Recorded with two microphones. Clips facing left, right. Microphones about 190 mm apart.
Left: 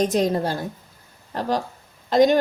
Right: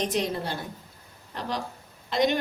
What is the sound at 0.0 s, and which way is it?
A woman's voice, 45° left (ahead or behind).